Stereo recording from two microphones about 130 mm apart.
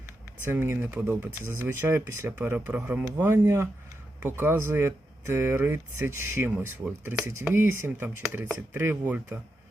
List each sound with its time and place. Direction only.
0.4 s speech: 15° right (ahead or behind)